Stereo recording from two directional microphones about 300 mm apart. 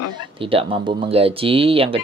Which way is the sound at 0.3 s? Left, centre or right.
Centre.